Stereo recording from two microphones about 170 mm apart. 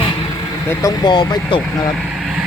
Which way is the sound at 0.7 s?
20° left (ahead or behind).